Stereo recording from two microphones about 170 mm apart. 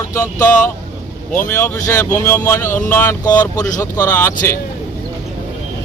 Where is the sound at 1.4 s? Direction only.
15° left (ahead or behind).